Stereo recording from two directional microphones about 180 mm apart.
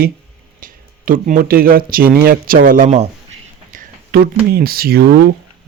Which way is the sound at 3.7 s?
55° right (ahead or behind).